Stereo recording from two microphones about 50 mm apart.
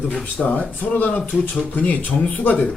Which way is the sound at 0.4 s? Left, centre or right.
Left.